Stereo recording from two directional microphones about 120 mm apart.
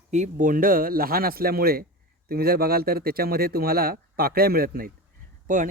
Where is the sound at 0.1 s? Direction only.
80° right.